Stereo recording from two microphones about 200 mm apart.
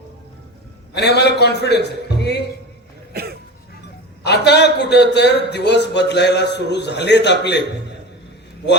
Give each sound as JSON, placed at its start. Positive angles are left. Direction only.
{"t": 0.9, "sound": "a man's voice", "side_deg": 55}
{"t": 3.1, "sound": "cough", "side_deg": -50}
{"t": 4.2, "sound": "a man's voice", "side_deg": 55}